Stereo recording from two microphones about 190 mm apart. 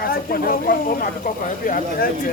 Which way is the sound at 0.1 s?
50° left (ahead or behind).